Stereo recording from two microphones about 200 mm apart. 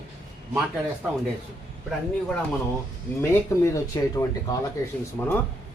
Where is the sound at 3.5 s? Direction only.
15° left (ahead or behind).